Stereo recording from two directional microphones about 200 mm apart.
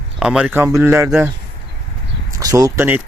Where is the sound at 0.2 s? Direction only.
5° right (ahead or behind).